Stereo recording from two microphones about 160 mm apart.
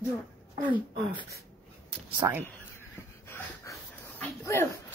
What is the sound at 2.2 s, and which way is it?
Speech, 25° right (ahead or behind).